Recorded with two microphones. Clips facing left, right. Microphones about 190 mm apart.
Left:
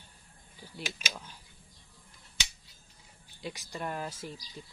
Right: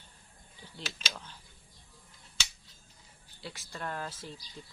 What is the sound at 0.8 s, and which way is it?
Speech, 10° left (ahead or behind).